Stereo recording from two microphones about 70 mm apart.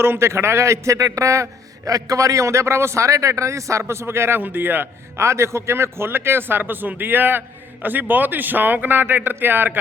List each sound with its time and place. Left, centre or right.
0.0 s a man's voice: right
5.2 s a man's voice: right